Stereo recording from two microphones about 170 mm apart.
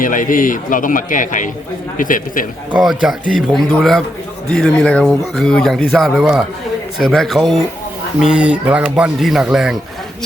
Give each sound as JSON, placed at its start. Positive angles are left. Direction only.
{"t": 0.0, "sound": "a man's voice", "side_deg": 50}
{"t": 2.7, "sound": "speech", "side_deg": -5}